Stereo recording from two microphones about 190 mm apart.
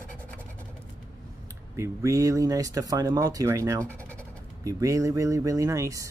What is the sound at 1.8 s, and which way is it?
Speech, 15° right (ahead or behind).